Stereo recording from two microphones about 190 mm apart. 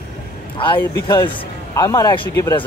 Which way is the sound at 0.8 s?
15° left (ahead or behind).